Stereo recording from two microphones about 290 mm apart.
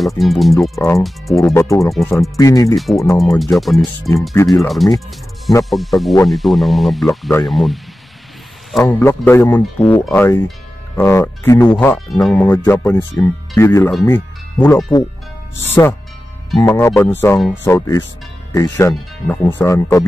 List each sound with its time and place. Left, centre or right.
0.2 s speech: centre
2.3 s speech: centre
2.7 s speech: centre